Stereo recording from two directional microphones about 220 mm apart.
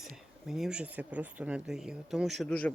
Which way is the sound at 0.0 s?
Centre (ahead or behind).